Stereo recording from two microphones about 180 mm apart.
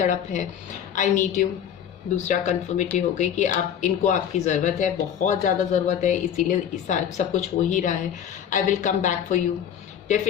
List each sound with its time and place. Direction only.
0.0 s speech: 40° left (ahead or behind)